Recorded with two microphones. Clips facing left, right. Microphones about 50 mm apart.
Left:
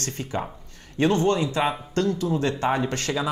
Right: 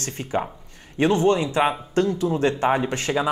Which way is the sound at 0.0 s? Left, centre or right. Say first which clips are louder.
Right 3 dB; right.